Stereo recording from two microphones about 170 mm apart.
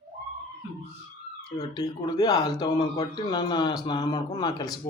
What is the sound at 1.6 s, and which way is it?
A man's voice, 20° left (ahead or behind).